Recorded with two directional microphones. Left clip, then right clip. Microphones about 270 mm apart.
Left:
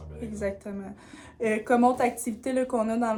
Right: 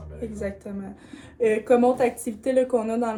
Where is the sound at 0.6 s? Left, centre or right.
Centre.